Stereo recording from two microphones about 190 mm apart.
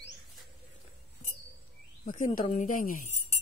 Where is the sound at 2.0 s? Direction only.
40° left (ahead or behind).